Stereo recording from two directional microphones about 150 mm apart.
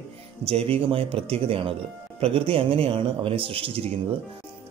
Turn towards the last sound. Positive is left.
turn(degrees=-40)  # may be behind; listen again after turning